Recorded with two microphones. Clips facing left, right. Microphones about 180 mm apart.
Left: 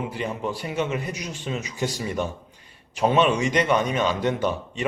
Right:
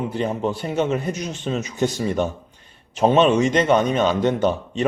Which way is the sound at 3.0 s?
25° right (ahead or behind).